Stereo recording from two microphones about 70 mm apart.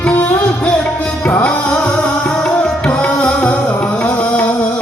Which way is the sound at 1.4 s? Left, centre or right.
Centre.